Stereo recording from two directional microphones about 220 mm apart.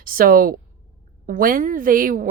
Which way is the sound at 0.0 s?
40° right (ahead or behind).